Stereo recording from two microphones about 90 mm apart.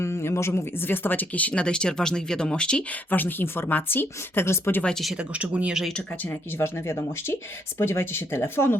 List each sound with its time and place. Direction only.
0.0 s speech: 30° left (ahead or behind); by 2.8 s 10° left (ahead or behind)
3.1 s speech: 20° left (ahead or behind)
4.8 s speech: 5° left (ahead or behind)
5.4 s speech: 15° right (ahead or behind)
6.6 s speech: 30° left (ahead or behind)